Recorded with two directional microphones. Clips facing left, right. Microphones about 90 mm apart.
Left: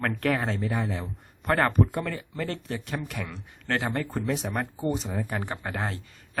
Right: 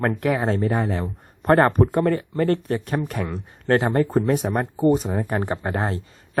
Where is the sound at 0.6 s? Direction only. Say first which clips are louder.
Right 7 dB; 55° right (ahead or behind).